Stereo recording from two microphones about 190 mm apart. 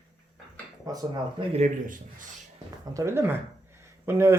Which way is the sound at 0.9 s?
20° right (ahead or behind).